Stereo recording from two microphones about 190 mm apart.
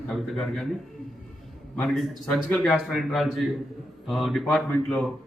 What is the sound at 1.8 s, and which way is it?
A man's voice, centre (ahead or behind).